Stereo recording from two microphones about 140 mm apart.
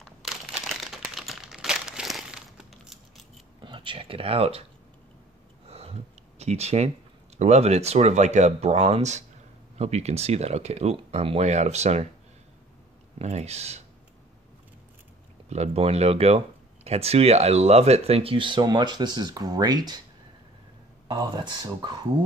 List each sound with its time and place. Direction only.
0.0 s crumpling: centre (ahead or behind)
3.6 s speech: 35° right (ahead or behind)
5.7 s a sound: 45° right (ahead or behind)
7.3 s speech: 50° right (ahead or behind)
13.2 s speech: 50° right (ahead or behind)
15.5 s speech: 50° right (ahead or behind); by 20.0 s 30° right (ahead or behind)
21.1 s speech: 35° right (ahead or behind)